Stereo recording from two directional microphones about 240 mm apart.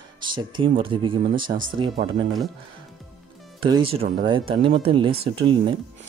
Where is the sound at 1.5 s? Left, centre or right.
Right.